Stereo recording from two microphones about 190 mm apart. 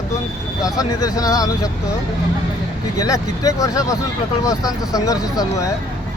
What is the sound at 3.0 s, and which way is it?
Speech, 20° left (ahead or behind).